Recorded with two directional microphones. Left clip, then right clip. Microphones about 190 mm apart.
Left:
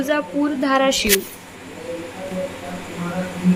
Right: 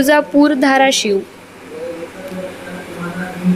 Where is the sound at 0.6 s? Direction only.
10° right (ahead or behind).